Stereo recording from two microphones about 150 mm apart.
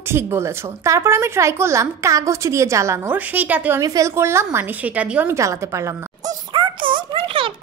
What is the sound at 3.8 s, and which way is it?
A woman's voice, 20° right (ahead or behind).